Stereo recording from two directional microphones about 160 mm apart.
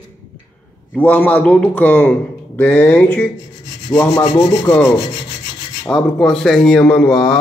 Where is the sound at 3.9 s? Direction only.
30° left (ahead or behind).